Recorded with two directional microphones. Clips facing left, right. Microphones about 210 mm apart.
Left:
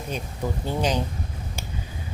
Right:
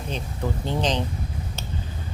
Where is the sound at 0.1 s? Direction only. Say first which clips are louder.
Even; 10° left (ahead or behind).